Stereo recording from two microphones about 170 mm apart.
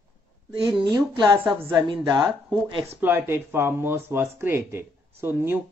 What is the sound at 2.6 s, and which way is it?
Speech, 35° right (ahead or behind).